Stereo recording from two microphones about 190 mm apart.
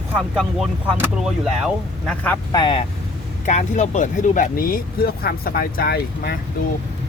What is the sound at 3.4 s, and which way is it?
Speech, 40° left (ahead or behind).